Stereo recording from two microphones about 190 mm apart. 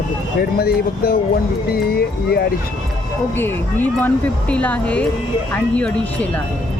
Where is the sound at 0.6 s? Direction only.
55° left (ahead or behind).